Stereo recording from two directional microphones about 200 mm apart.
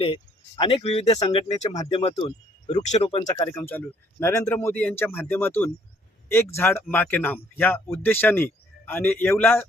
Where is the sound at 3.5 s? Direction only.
10° left (ahead or behind).